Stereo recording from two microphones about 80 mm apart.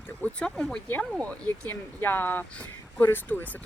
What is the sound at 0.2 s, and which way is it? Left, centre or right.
Speech, centre.